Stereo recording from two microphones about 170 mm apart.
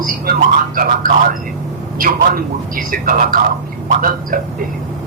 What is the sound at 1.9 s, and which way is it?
Speech, 55° right (ahead or behind).